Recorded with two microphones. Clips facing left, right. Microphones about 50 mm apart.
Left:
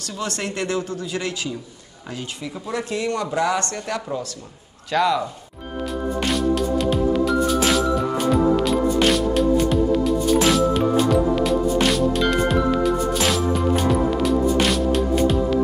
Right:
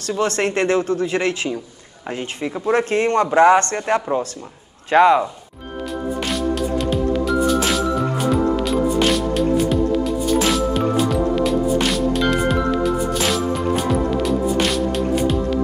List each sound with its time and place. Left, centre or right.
0.1 s speech: right
6.2 s music: centre